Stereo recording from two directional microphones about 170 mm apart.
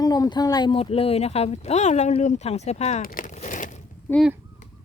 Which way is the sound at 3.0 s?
55° left (ahead or behind).